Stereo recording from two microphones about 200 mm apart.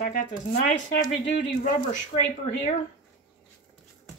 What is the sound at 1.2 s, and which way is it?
Speech, 40° left (ahead or behind).